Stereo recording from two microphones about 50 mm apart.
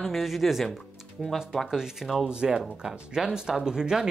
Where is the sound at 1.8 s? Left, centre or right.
Centre.